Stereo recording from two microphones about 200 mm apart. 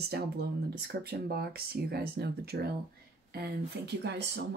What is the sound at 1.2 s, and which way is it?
Speech, 50° right (ahead or behind).